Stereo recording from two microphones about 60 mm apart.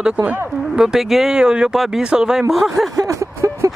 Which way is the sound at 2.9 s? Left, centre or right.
Right.